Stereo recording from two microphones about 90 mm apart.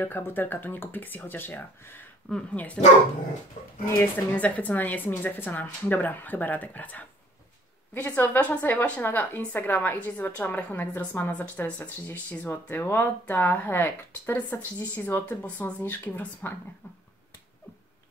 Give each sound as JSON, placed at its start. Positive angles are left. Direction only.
{"t": 0.0, "sound": "a woman's voice", "side_deg": 25}
{"t": 2.2, "sound": "speech", "side_deg": 10}
{"t": 4.0, "sound": "a woman's voice", "side_deg": 15}